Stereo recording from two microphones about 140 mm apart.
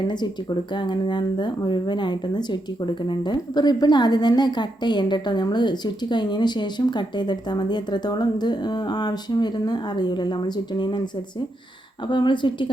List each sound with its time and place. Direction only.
0.8 s a woman's voice: 35° left (ahead or behind)
12.0 s a woman's voice: 35° left (ahead or behind)